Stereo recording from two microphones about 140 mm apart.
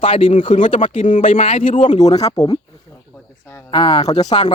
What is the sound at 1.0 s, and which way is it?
Speech, 70° left (ahead or behind).